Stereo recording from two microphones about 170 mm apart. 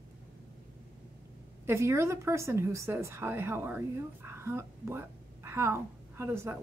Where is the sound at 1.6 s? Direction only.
15° right (ahead or behind).